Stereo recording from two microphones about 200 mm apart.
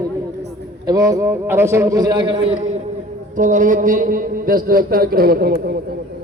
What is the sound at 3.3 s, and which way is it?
A man's voice, 40° right (ahead or behind).